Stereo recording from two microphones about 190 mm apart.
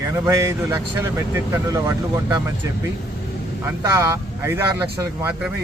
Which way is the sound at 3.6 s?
15° right (ahead or behind).